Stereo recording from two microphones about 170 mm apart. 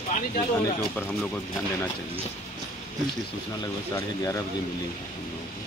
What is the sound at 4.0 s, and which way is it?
Speech, 15° left (ahead or behind).